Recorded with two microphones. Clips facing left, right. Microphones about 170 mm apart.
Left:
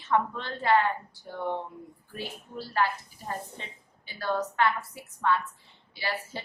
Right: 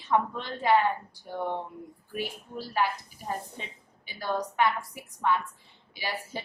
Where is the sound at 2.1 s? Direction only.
15° right (ahead or behind).